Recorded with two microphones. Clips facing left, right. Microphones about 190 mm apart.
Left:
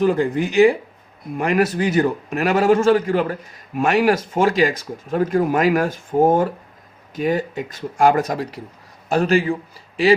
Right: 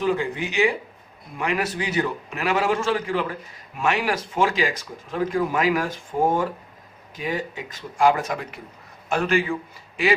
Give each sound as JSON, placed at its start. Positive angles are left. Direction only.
{"t": 0.0, "sound": "a man's voice", "side_deg": 45}